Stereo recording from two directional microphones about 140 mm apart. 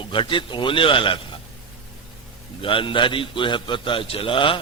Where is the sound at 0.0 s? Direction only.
35° left (ahead or behind).